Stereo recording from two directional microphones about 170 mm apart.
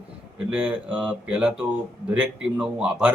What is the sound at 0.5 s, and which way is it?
A man's voice, 5° right (ahead or behind).